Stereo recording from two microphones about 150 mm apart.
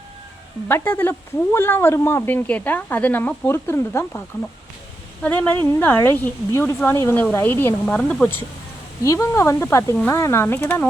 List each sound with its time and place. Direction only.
0.7 s speech: 15° left (ahead or behind)
5.2 s speech: 10° left (ahead or behind)